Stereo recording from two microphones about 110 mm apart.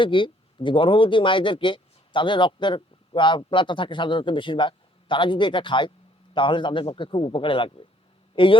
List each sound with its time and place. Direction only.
0.0 s speech: 50° left (ahead or behind)